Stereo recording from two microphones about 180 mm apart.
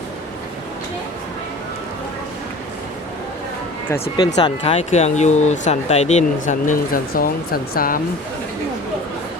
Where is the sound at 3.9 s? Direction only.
30° left (ahead or behind); by 7.9 s 55° left (ahead or behind).